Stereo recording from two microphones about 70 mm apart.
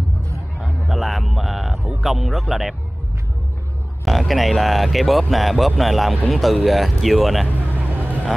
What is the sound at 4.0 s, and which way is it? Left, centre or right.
Speech, centre.